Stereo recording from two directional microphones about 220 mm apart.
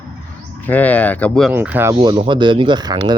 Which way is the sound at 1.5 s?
10° right (ahead or behind).